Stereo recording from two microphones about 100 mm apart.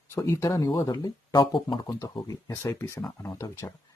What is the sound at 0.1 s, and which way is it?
Speech, 30° left (ahead or behind).